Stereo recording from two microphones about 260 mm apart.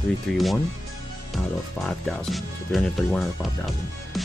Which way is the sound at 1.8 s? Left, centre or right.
Centre.